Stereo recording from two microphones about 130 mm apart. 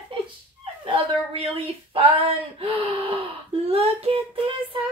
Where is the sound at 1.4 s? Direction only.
45° right (ahead or behind).